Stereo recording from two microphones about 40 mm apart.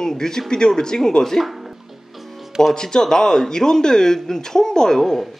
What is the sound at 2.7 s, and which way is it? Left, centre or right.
Speech, centre.